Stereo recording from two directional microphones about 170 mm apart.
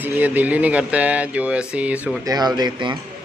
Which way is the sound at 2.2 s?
25° right (ahead or behind).